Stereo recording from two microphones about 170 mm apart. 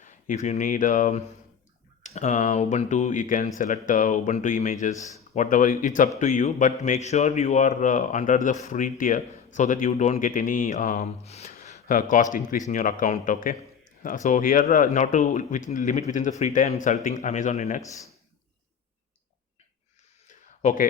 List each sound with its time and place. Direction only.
0.0 s speech: 45° left (ahead or behind)
11.7 s speech: 50° left (ahead or behind)
20.6 s speech: 45° left (ahead or behind)